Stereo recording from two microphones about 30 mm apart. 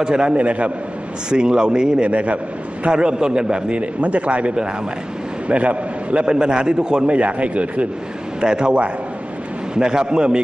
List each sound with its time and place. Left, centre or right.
0.0 s a man's voice: right
0.3 s speech: right
1.3 s a man's voice: right
2.0 s speech: right
2.9 s a man's voice: right
3.7 s a man's voice: right
6.2 s a man's voice: right
7.1 s speech: right
8.4 s a man's voice: right
9.8 s a man's voice: right